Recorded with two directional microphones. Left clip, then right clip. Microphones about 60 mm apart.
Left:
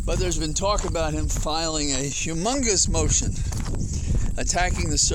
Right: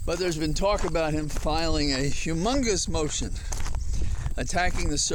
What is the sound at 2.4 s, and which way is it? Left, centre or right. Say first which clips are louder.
Speech: left 3 dB; left.